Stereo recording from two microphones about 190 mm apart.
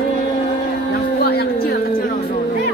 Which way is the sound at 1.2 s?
55° left (ahead or behind).